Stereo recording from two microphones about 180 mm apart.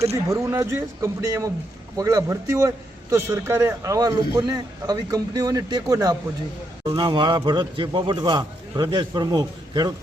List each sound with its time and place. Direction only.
0.3 s a man's voice: 20° right (ahead or behind)